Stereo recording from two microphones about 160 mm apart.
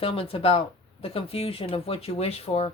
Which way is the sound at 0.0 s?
35° left (ahead or behind).